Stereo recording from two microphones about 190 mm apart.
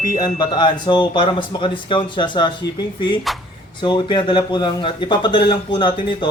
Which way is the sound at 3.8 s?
25° left (ahead or behind).